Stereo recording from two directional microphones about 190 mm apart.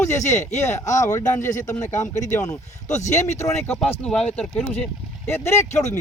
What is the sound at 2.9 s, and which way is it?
Speech, 40° left (ahead or behind).